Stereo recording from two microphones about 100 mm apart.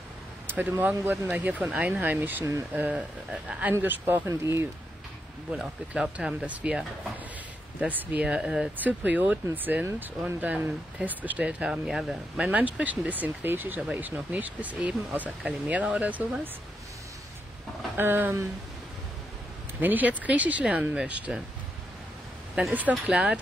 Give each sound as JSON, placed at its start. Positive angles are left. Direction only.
{"t": 0.5, "sound": "speech", "side_deg": -20}
{"t": 5.5, "sound": "speech", "side_deg": -10}
{"t": 12.4, "sound": "speech", "side_deg": -15}
{"t": 17.9, "sound": "speech", "side_deg": -20}
{"t": 19.8, "sound": "speech", "side_deg": -15}
{"t": 22.6, "sound": "speech", "side_deg": -15}